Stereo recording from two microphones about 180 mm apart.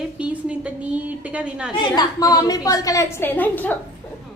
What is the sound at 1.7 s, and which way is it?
A woman's voice, 25° left (ahead or behind).